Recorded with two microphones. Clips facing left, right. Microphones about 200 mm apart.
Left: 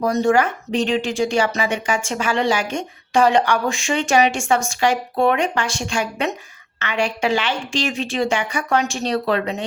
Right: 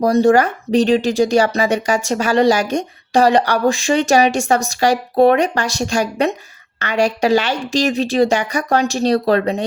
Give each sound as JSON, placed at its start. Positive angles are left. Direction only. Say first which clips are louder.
{"t": 0.0, "sound": "speech", "louder": "right 5 dB", "side_deg": -35}